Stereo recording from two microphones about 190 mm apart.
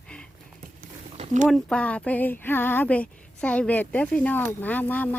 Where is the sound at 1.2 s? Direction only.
40° right (ahead or behind).